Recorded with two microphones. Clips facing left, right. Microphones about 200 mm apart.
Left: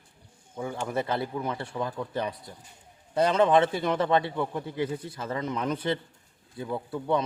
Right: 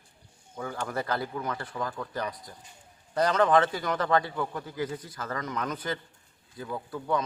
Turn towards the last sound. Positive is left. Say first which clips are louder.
# left 3 dB
turn(degrees=25)  # may be behind; listen again after turning